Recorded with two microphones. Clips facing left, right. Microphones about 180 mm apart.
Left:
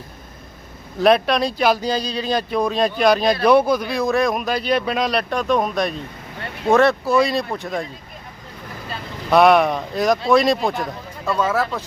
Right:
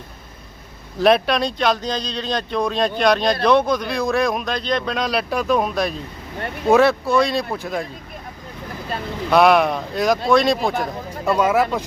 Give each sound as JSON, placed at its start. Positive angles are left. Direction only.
{"t": 0.9, "sound": "speech", "side_deg": 0}
{"t": 9.3, "sound": "speech", "side_deg": 0}
{"t": 11.3, "sound": "speech", "side_deg": -15}